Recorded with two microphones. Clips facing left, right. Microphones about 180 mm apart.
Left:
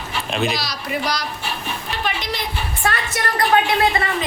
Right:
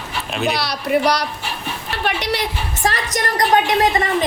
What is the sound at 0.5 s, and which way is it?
A woman's voice, 60° right (ahead or behind).